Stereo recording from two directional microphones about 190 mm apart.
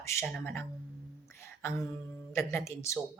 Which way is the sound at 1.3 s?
15° left (ahead or behind).